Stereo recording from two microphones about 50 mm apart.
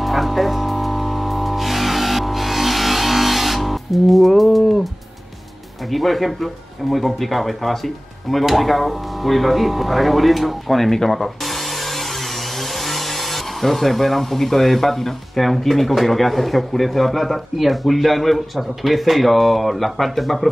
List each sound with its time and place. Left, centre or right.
0.0 s music: centre
5.9 s speech: centre